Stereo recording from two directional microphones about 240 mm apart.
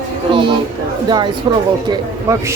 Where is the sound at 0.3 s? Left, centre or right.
Right.